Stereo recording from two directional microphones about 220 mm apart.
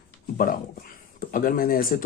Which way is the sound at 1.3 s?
40° left (ahead or behind).